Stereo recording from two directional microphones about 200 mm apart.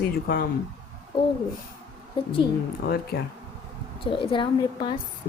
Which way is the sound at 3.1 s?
50° left (ahead or behind).